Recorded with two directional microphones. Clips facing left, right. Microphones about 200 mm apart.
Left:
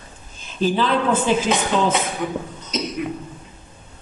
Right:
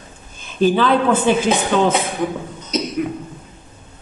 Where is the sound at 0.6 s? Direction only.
60° right (ahead or behind).